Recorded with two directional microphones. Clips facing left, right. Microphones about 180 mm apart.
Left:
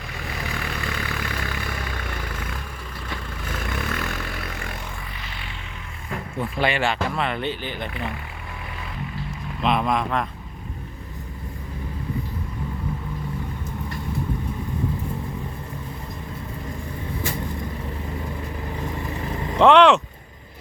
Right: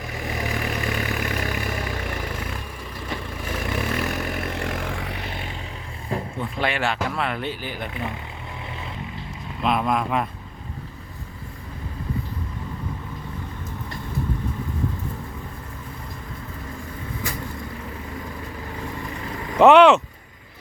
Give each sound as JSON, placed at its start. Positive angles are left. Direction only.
{"t": 0.1, "sound": "vehicle", "side_deg": -20}
{"t": 4.4, "sound": "vehicle", "side_deg": -65}
{"t": 6.4, "sound": "speech", "side_deg": 0}
{"t": 7.9, "sound": "speech", "side_deg": -20}
{"t": 9.6, "sound": "speech", "side_deg": 0}
{"t": 19.5, "sound": "speech", "side_deg": -5}